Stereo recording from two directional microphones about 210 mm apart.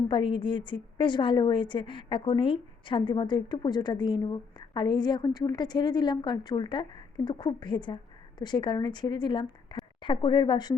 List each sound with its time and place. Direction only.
0.1 s a woman's voice: 25° left (ahead or behind)